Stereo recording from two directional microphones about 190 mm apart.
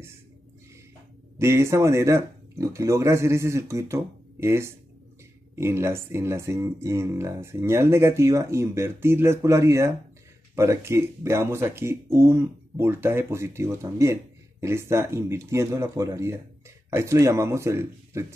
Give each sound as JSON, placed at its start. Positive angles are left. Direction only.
{"t": 1.4, "sound": "speech", "side_deg": -15}